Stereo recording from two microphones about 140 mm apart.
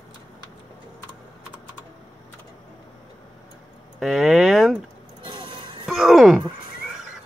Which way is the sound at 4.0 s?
Centre (ahead or behind).